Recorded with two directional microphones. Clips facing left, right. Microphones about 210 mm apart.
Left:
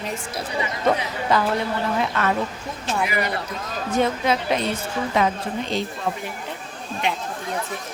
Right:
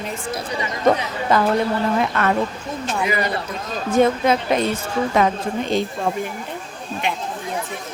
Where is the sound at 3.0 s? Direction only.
25° right (ahead or behind).